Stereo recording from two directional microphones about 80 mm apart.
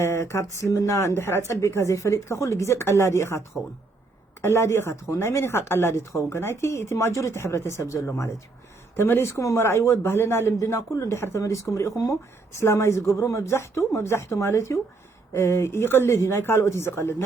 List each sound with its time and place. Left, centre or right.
0.0 s speech: left